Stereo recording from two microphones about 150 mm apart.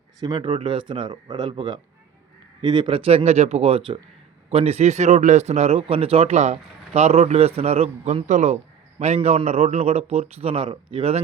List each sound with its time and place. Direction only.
0.2 s a man's voice: 30° right (ahead or behind)